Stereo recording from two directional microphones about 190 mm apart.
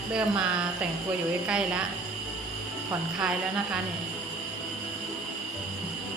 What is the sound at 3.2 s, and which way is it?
Speech, 5° right (ahead or behind).